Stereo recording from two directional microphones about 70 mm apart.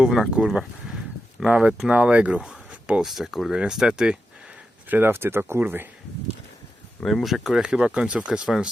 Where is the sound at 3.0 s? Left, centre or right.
Centre.